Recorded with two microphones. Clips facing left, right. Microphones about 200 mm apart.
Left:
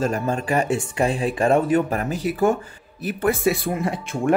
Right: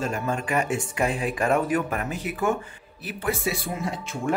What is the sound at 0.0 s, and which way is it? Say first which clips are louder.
Speech: left 5 dB; 35° left (ahead or behind).